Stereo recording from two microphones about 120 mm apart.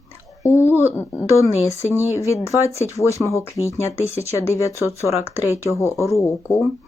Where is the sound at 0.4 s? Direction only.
20° left (ahead or behind).